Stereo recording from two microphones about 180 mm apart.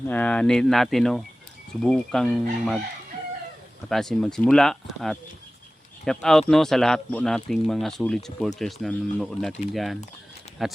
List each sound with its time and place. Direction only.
0.1 s speech: 10° left (ahead or behind)
3.8 s speech: centre (ahead or behind)